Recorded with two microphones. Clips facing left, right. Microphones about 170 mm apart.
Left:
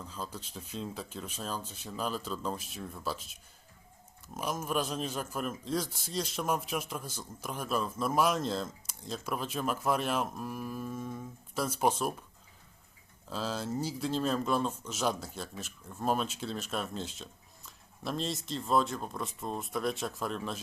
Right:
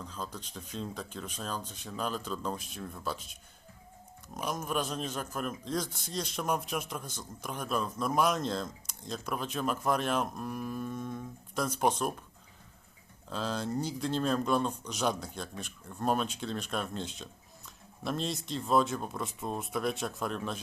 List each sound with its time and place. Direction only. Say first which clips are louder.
0.0 s a man's voice: even; 5° left (ahead or behind)
4.4 s a man's voice: left 1 dB; 5° left (ahead or behind)
13.3 s a man's voice: right 1 dB; 5° left (ahead or behind)